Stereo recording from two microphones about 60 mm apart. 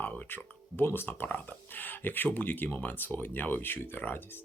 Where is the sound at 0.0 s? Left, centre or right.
Left.